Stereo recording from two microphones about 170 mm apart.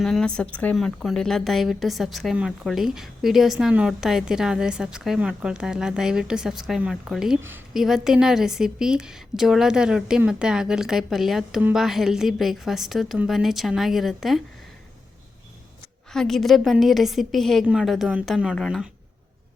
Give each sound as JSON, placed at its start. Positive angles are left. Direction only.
{"t": 0.0, "sound": "a woman's voice", "side_deg": 5}
{"t": 16.1, "sound": "a woman's voice", "side_deg": 0}